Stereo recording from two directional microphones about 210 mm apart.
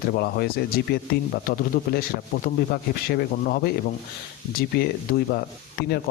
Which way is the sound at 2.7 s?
45° left (ahead or behind).